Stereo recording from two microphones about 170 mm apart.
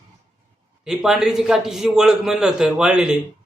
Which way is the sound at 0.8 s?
Centre (ahead or behind).